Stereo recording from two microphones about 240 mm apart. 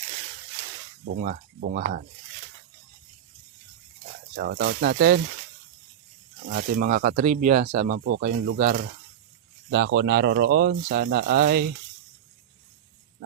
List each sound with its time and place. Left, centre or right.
1.1 s speech: right
4.4 s speech: right
6.5 s speech: right
9.7 s speech: right